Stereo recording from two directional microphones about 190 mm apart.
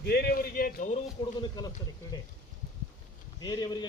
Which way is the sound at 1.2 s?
20° left (ahead or behind).